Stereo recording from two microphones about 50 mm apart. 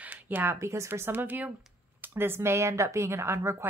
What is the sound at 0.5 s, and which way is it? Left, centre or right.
Speech, right.